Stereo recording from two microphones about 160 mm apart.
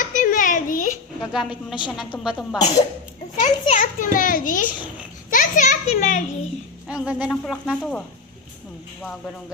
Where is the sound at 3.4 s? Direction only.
50° left (ahead or behind).